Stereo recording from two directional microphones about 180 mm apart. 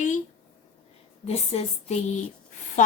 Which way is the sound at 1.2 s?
35° left (ahead or behind).